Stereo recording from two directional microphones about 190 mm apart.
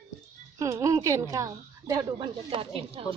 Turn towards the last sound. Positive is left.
turn(degrees=-30)  # may be behind; listen again after turning